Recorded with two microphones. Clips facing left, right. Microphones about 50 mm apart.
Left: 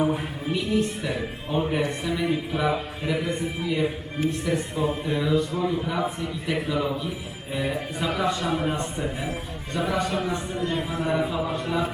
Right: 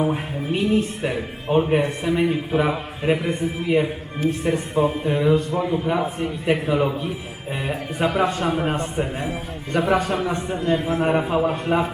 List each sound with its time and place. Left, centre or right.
0.5 s a man's voice: right